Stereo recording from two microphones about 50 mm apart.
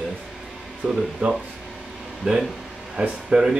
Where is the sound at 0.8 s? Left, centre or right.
Right.